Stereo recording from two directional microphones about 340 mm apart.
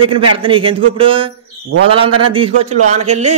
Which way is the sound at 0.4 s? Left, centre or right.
Centre.